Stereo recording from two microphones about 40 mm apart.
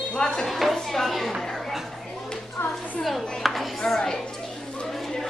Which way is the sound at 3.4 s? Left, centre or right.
Centre.